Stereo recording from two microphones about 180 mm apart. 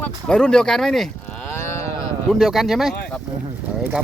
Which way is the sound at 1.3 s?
10° left (ahead or behind).